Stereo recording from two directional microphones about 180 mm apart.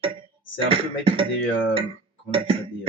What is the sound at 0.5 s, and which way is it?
Music, 30° right (ahead or behind).